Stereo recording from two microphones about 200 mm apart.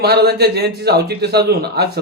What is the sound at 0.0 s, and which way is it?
A man's voice, 55° right (ahead or behind).